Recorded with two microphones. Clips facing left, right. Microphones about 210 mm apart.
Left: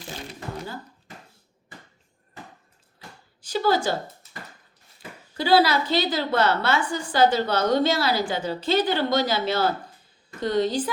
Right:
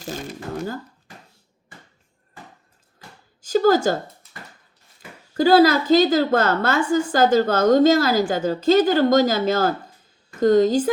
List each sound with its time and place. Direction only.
0.0 s shuffling cards: 45° right (ahead or behind)
3.4 s speech: 45° right (ahead or behind)
5.4 s a woman's voice: 45° right (ahead or behind)